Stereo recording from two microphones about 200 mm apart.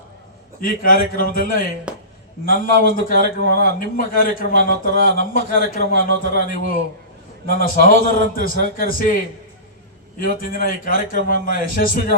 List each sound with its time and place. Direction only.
0.6 s a man's voice: 45° left (ahead or behind)
1.9 s a sound: 5° right (ahead or behind)
2.4 s a man's voice: 45° left (ahead or behind)
10.2 s a man's voice: 45° left (ahead or behind)